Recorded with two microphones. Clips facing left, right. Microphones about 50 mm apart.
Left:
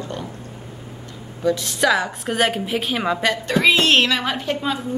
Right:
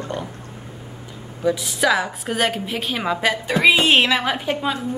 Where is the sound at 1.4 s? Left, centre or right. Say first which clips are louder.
Even; centre.